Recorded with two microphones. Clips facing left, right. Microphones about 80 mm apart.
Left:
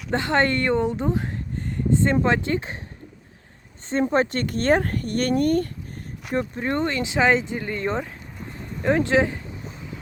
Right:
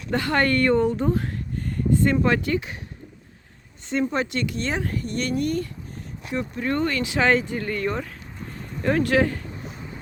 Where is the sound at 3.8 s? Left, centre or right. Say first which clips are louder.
Left 3 dB; left.